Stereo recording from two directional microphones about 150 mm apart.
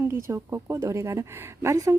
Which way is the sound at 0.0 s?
20° right (ahead or behind).